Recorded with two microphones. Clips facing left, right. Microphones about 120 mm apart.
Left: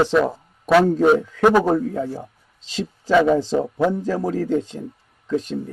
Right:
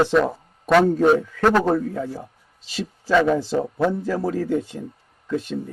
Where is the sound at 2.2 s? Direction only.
10° right (ahead or behind).